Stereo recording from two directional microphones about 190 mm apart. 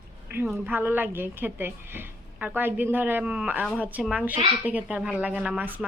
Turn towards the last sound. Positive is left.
turn(degrees=-10)  # may be behind; listen again after turning